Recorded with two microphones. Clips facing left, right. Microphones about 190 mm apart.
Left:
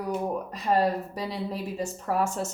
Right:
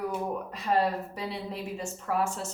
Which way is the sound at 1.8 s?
40° left (ahead or behind).